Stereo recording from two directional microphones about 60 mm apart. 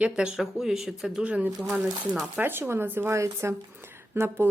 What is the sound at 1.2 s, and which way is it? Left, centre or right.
Speech, right.